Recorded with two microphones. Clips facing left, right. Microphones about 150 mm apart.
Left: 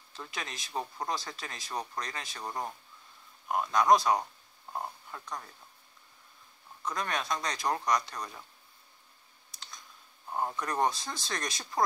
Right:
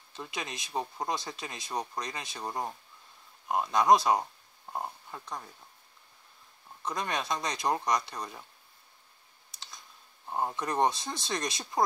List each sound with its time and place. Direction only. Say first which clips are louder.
0.1 s speech: right 2 dB; 20° right (ahead or behind)
6.8 s speech: right 1 dB; 20° right (ahead or behind)
10.3 s speech: right 2 dB; 20° right (ahead or behind)